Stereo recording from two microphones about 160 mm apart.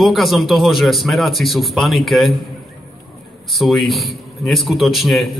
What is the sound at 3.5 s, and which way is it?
A man's voice, centre (ahead or behind).